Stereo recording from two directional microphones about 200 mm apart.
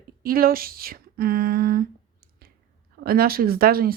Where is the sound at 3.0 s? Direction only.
50° right (ahead or behind).